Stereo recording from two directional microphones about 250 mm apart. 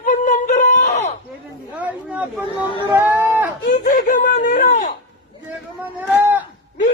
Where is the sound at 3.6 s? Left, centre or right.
Left.